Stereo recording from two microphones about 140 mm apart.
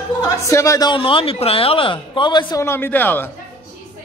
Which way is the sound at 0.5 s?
20° left (ahead or behind).